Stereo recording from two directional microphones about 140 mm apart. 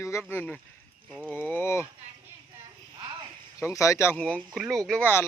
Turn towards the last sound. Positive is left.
turn(degrees=5)  # may be behind; listen again after turning